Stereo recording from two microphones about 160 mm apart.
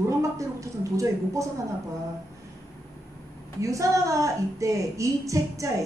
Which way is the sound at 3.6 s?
20° right (ahead or behind).